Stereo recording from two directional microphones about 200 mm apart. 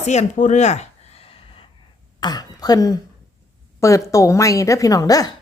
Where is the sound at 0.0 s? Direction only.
35° left (ahead or behind).